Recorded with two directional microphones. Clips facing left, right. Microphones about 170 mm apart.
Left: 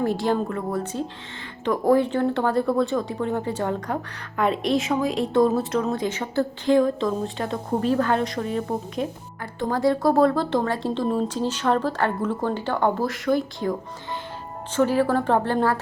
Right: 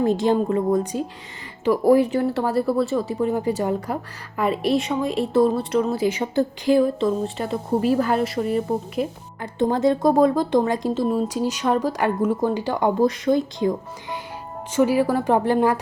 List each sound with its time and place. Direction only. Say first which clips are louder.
0.0 s a woman's voice: right 4 dB; 20° right (ahead or behind)
9.4 s speech: right 3 dB; 20° right (ahead or behind)